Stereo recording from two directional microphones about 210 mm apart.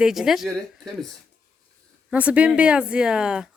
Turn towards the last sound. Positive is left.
turn(degrees=-5)  # may be behind; listen again after turning